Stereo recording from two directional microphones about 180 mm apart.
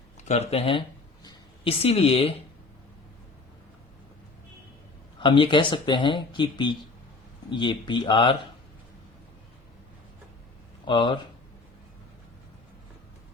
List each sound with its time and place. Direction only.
0.3 s a sound: 35° left (ahead or behind)
1.8 s speech: 35° left (ahead or behind)
5.2 s speech: 25° left (ahead or behind)
10.8 s speech: 25° left (ahead or behind)